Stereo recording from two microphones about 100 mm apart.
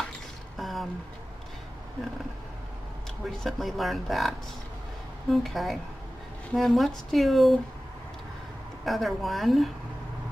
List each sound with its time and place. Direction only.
0.6 s a sound: centre (ahead or behind)
3.3 s speech: centre (ahead or behind)
8.8 s speech: centre (ahead or behind)